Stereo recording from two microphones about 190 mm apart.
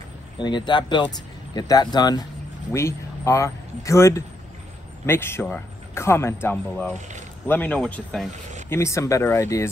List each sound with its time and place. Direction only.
0.4 s speech: 25° left (ahead or behind); by 8.3 s 5° left (ahead or behind)
8.3 s speech: 40° right (ahead or behind)
8.6 s speech: 15° left (ahead or behind)